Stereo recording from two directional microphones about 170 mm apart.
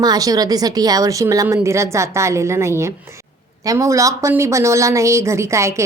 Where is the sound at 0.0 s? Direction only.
20° right (ahead or behind).